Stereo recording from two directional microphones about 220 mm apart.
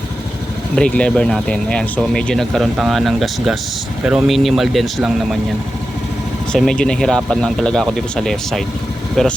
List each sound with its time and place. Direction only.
0.8 s speech: 5° left (ahead or behind)
6.5 s speech: 5° left (ahead or behind)